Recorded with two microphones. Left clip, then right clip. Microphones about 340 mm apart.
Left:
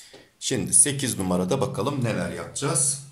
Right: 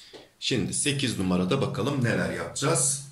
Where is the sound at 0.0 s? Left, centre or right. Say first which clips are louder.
Right 1 dB; centre.